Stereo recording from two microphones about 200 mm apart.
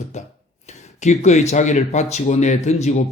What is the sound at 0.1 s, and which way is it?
Speech, 35° left (ahead or behind).